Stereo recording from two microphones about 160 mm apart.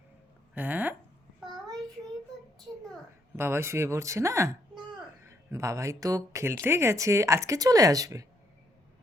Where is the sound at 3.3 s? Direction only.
15° right (ahead or behind).